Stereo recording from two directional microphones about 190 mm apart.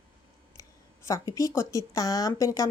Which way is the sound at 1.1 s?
15° left (ahead or behind).